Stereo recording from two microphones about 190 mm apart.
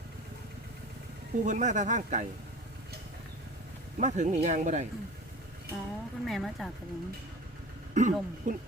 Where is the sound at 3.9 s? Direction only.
40° right (ahead or behind).